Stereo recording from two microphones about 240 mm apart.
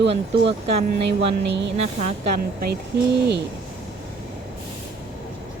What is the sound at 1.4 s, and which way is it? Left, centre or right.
Speech, right.